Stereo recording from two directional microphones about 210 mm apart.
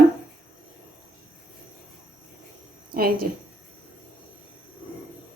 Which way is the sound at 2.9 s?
45° right (ahead or behind).